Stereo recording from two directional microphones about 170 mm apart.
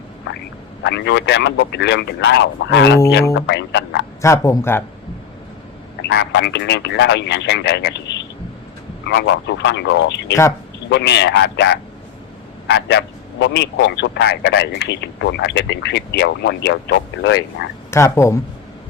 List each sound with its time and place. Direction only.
0.3 s a sound: 90° left
0.8 s a man's voice: 90° left
4.2 s speech: 15° left (ahead or behind)
6.0 s a man's voice: 85° left
17.9 s speech: 15° left (ahead or behind)